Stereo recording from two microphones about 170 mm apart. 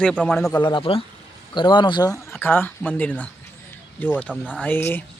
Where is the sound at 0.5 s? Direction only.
25° left (ahead or behind); by 5.0 s 10° left (ahead or behind).